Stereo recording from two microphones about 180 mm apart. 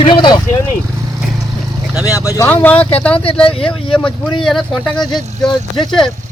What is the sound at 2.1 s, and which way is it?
Speech, 15° left (ahead or behind).